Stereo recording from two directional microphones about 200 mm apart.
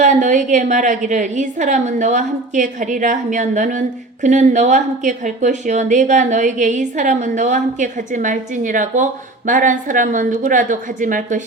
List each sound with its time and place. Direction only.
0.0 s a woman's voice: 35° right (ahead or behind)